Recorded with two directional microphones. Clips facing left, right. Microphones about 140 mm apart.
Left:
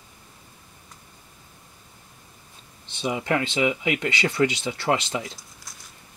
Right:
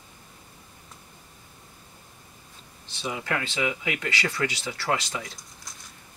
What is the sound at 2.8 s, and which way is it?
Speech, 20° left (ahead or behind).